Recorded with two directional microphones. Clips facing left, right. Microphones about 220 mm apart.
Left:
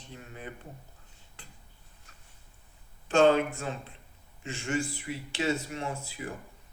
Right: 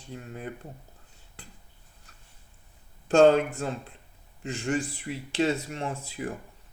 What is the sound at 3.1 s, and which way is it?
Speech, 40° right (ahead or behind).